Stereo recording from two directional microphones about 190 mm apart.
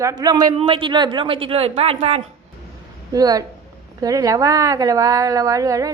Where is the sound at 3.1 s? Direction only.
20° right (ahead or behind).